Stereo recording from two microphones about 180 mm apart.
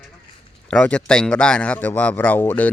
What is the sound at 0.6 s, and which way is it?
Speech, 5° left (ahead or behind).